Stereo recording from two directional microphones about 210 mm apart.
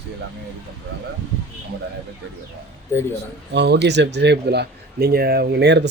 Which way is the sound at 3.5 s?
50° right (ahead or behind).